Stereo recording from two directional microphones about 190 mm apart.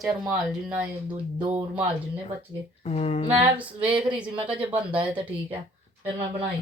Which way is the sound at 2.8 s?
35° left (ahead or behind).